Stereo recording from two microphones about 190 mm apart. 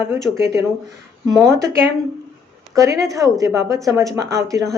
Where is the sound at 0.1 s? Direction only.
15° right (ahead or behind).